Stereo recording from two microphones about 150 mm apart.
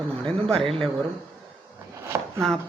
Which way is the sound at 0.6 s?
35° right (ahead or behind).